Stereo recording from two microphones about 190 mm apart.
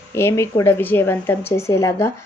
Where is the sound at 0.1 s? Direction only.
15° left (ahead or behind).